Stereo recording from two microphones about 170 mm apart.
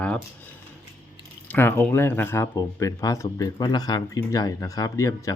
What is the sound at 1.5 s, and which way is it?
Speech, 15° left (ahead or behind).